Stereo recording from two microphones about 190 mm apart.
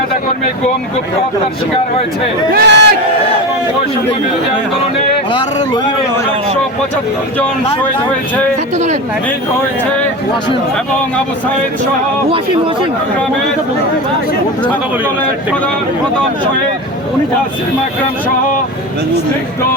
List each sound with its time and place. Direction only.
2.5 s speech: 60° right (ahead or behind)